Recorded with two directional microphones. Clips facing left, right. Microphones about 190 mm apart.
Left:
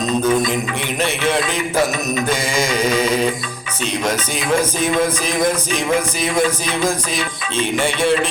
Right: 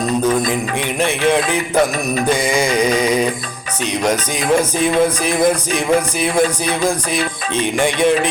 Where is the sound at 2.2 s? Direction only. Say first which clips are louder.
Right 5 dB; 10° right (ahead or behind).